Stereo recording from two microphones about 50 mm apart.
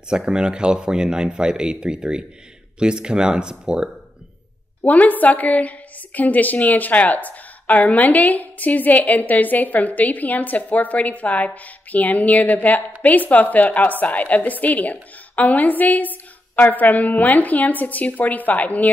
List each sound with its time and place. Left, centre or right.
0.1 s speech: centre
4.8 s a woman's voice: left